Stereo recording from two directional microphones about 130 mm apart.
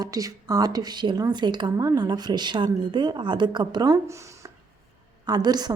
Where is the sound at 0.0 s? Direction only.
25° right (ahead or behind).